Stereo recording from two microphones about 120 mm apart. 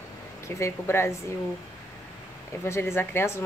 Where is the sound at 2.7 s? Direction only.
20° left (ahead or behind).